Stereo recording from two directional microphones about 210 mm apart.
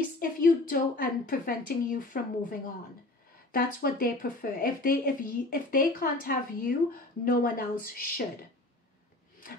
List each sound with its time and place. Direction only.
0.2 s speech: 45° left (ahead or behind)